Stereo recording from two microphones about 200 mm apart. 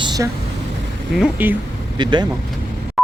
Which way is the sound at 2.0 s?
20° right (ahead or behind).